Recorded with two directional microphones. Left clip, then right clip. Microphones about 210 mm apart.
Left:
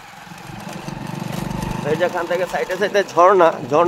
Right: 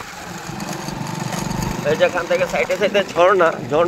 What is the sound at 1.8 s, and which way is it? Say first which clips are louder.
Speech: right 3 dB; 20° left (ahead or behind).